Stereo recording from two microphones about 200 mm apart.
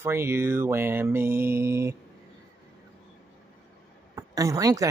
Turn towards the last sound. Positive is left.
turn(degrees=-15)  # may be behind; listen again after turning